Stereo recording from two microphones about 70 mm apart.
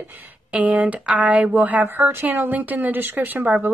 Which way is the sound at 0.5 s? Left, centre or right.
Centre.